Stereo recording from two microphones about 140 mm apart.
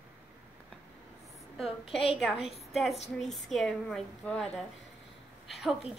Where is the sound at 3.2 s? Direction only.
Centre (ahead or behind).